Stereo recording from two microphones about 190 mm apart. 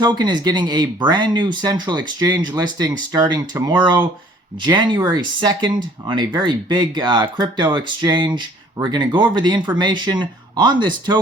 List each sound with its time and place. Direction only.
0.0 s speech: 25° right (ahead or behind)